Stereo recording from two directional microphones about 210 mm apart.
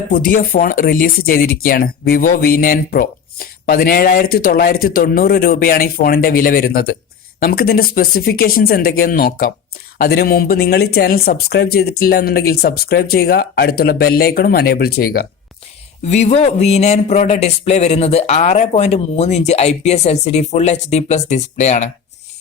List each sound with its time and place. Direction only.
0.1 s speech: 40° left (ahead or behind)
16.0 s speech: 30° left (ahead or behind)